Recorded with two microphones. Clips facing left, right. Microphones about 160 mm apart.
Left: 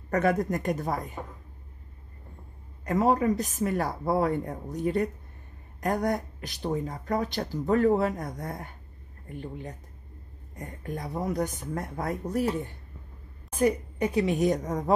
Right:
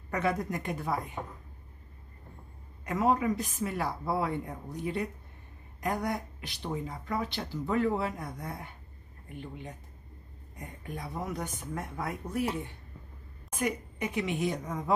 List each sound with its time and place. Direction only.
0.1 s speech: 45° left (ahead or behind)
2.8 s speech: 40° left (ahead or behind)
10.6 s a woman's voice: 40° left (ahead or behind)